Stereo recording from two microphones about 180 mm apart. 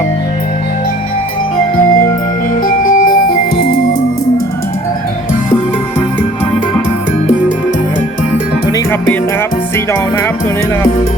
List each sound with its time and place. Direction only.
2.6 s music: 50° left (ahead or behind)
8.7 s music: 10° left (ahead or behind)